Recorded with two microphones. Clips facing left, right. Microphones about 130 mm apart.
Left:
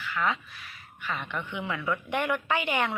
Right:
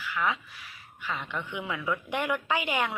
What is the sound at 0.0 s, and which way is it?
A woman's voice, 15° right (ahead or behind).